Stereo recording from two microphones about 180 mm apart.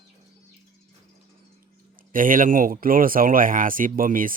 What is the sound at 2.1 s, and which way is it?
Speech, 50° right (ahead or behind).